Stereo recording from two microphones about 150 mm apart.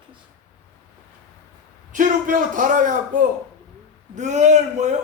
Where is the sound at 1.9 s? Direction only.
60° right (ahead or behind).